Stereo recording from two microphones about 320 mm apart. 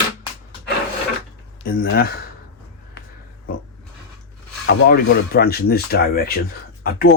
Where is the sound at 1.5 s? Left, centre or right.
Left.